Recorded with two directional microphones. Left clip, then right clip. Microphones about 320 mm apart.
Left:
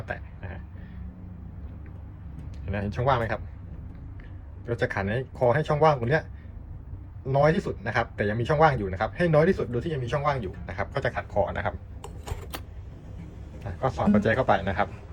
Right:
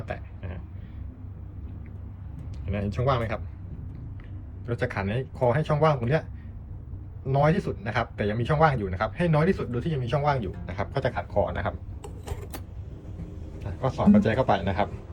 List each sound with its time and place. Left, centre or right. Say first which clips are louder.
0.0 s a sound: left 1 dB; centre
2.6 s speech: left 1 dB; centre
4.6 s speech: left 2 dB; centre
7.3 s speech: left 2 dB; centre
11.7 s speech: even; left
13.6 s a man's voice: left 1 dB; centre